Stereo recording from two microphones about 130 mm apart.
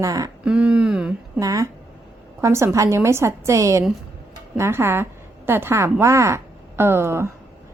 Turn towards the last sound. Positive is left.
turn(degrees=-20)  # may be behind; listen again after turning